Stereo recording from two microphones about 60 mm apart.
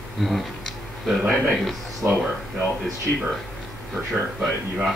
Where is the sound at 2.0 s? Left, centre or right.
Right.